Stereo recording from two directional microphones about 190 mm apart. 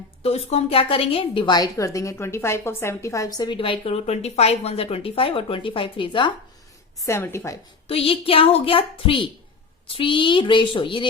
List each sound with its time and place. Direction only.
0.2 s a woman's voice: 35° left (ahead or behind)
7.0 s a woman's voice: 15° left (ahead or behind)
7.9 s a woman's voice: 30° left (ahead or behind)